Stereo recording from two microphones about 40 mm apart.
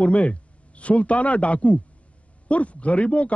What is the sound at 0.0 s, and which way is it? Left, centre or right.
A man's voice, left.